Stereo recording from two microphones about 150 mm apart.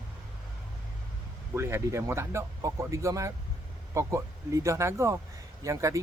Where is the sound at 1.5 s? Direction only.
15° right (ahead or behind).